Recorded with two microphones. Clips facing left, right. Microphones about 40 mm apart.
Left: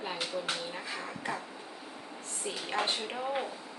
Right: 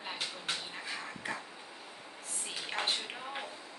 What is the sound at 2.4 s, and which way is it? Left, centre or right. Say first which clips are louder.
Speech: left 4 dB; centre.